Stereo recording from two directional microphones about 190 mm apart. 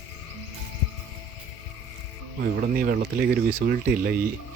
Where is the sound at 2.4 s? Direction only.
55° right (ahead or behind).